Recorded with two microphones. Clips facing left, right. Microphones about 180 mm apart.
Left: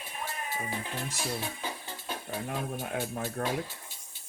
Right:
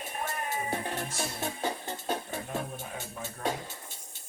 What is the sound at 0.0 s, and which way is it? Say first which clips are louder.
Music: right 3 dB; 45° right (ahead or behind).